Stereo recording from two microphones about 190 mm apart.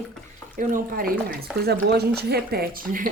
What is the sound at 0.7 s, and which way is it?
Speech, 50° right (ahead or behind).